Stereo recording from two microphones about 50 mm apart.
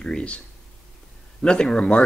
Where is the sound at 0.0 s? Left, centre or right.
Left.